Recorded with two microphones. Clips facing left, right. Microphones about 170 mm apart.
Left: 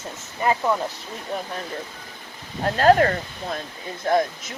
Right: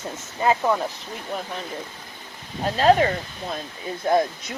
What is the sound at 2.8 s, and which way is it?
Speech, 5° right (ahead or behind).